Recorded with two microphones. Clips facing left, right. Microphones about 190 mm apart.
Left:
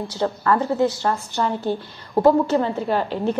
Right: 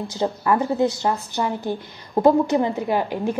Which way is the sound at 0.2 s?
15° right (ahead or behind).